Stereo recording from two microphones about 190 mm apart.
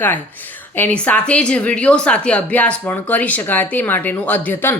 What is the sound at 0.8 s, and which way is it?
A woman's voice, 5° left (ahead or behind).